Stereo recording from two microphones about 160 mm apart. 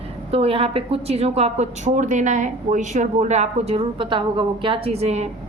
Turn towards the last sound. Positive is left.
turn(degrees=-40)  # may be behind; listen again after turning